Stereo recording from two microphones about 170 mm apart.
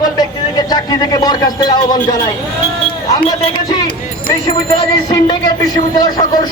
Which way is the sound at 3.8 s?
30° left (ahead or behind).